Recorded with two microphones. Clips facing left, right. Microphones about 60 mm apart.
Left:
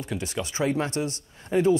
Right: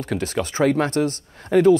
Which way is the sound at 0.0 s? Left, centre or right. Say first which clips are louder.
Right 6 dB; right.